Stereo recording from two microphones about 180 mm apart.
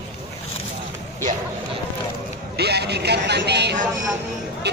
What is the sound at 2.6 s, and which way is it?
Speech, 65° right (ahead or behind).